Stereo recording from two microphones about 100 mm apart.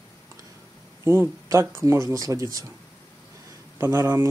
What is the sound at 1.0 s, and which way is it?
Speech, 25° right (ahead or behind).